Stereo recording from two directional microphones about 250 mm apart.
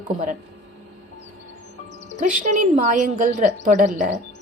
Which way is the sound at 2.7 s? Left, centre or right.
Right.